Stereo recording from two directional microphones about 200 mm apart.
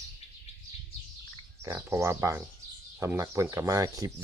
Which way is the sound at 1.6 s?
15° right (ahead or behind).